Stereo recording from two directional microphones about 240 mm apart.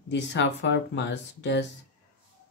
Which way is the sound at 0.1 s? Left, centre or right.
Left.